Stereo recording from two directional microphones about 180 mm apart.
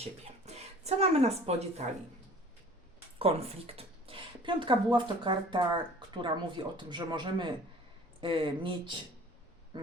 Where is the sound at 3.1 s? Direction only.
35° right (ahead or behind).